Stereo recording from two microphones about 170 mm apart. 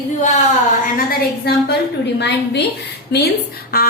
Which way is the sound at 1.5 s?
70° left (ahead or behind).